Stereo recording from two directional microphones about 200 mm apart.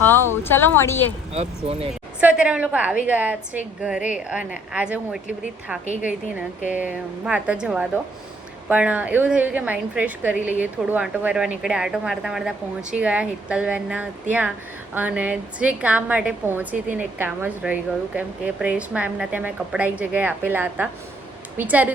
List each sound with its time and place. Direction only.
0.0 s speech: 10° left (ahead or behind)
1.3 s speech: 30° right (ahead or behind)
1.9 s a woman's voice: 5° right (ahead or behind)
6.0 s a woman's voice: 40° left (ahead or behind)
7.3 s a woman's voice: 5° right (ahead or behind)